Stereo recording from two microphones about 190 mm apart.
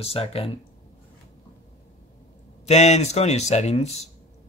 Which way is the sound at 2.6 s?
35° left (ahead or behind).